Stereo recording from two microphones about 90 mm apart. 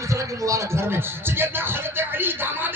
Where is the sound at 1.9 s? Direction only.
25° right (ahead or behind).